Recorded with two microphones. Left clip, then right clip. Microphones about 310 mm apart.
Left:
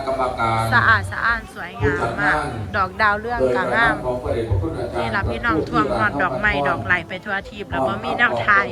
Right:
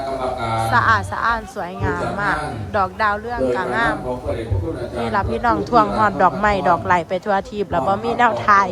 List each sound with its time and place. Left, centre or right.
0.7 s a woman's voice: centre
5.0 s a woman's voice: centre